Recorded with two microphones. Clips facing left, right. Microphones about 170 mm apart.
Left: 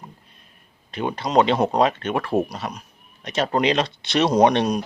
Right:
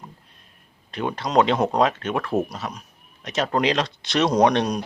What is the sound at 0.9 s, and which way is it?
Speech, centre (ahead or behind).